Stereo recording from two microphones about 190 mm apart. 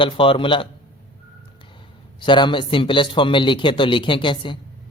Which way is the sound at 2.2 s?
25° left (ahead or behind).